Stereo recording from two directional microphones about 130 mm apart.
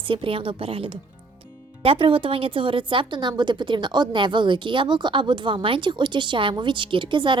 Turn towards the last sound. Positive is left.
turn(degrees=-40)  # may be behind; listen again after turning